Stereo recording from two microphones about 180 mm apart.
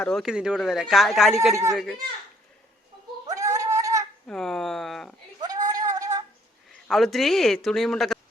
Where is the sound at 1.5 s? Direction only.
20° right (ahead or behind).